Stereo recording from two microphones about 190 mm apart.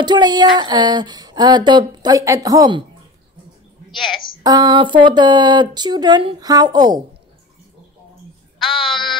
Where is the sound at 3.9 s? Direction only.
Centre (ahead or behind).